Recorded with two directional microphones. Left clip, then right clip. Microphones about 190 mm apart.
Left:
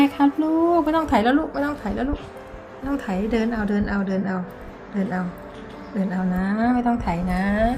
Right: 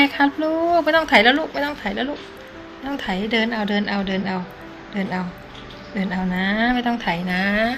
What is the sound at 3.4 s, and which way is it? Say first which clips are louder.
A woman's voice: right 5 dB; 15° right (ahead or behind).